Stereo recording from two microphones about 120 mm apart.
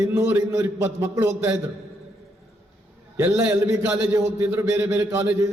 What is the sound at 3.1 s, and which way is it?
A man's voice, 20° right (ahead or behind).